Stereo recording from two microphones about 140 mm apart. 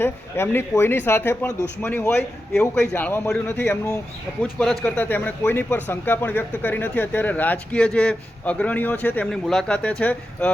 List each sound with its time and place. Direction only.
0.0 s speech: 15° left (ahead or behind)
4.6 s speech: centre (ahead or behind)
4.9 s speech: 15° left (ahead or behind)